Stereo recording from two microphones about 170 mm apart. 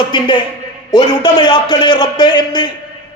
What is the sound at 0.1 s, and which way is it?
A man's voice, 25° left (ahead or behind).